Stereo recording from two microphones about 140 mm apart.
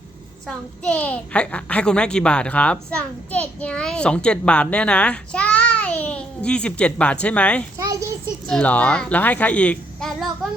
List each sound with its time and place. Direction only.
0.4 s a child's voice: 10° left (ahead or behind)
7.8 s a child's voice: 25° right (ahead or behind)
8.4 s a child's voice: 5° left (ahead or behind)